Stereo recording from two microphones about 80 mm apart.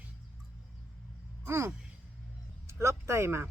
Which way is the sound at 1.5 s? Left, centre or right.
Right.